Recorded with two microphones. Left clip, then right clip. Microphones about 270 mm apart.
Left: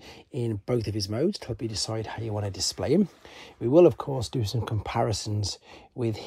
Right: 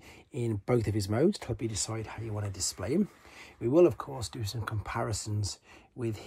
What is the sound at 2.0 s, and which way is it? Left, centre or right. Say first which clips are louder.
Speech: left 7 dB; left.